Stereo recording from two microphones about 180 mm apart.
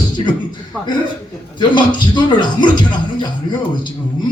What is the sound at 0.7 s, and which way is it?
Speech, centre (ahead or behind).